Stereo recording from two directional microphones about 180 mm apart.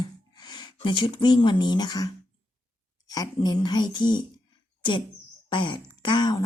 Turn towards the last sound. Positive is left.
turn(degrees=25)  # may be behind; listen again after turning